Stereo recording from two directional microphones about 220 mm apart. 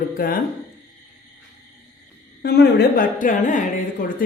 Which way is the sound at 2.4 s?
50° left (ahead or behind).